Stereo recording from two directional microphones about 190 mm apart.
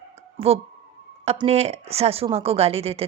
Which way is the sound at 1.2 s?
35° right (ahead or behind).